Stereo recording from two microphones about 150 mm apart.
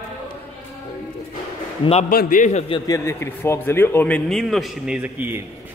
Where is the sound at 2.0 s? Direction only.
65° left (ahead or behind).